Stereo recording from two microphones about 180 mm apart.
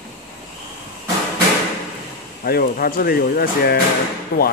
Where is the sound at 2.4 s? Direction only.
55° left (ahead or behind).